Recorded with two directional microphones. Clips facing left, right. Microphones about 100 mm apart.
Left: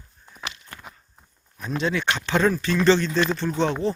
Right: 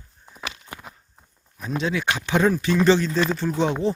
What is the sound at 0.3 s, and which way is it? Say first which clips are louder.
Walk: right 2 dB; 10° right (ahead or behind).